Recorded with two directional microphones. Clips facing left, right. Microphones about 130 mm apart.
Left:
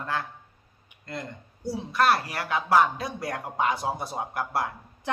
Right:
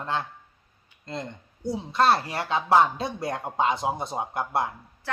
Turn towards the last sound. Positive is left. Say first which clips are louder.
# left 2 dB
turn(degrees=20)  # may be behind; listen again after turning